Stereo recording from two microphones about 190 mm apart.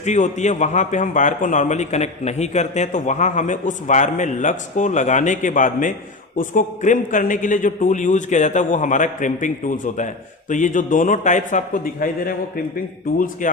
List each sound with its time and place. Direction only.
0.0 s a man's voice: 40° left (ahead or behind)